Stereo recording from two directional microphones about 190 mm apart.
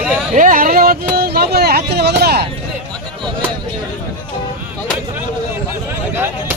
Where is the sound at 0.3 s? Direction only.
45° right (ahead or behind).